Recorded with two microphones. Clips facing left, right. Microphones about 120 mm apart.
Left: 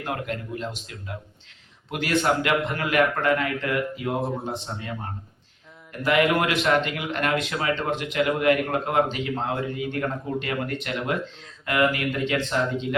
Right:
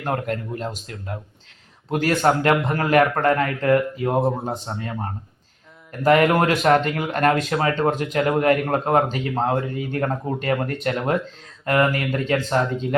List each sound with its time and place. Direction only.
0.0 s speech: 45° right (ahead or behind)
6.0 s speech: 40° right (ahead or behind)